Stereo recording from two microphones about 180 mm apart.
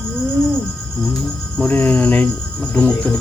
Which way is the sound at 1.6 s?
10° left (ahead or behind).